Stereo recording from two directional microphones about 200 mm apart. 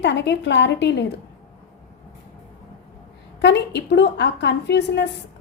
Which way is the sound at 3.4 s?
60° left (ahead or behind).